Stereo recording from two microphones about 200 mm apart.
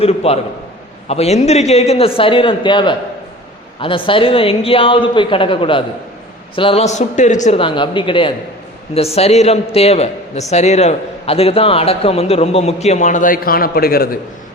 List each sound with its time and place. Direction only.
0.0 s a man's voice: 30° left (ahead or behind); by 14.2 s 50° left (ahead or behind)